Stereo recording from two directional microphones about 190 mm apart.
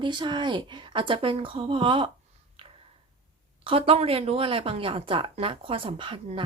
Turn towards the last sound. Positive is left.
turn(degrees=-25)  # may be behind; listen again after turning